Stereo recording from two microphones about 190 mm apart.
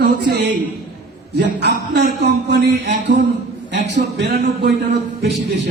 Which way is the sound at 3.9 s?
60° right (ahead or behind).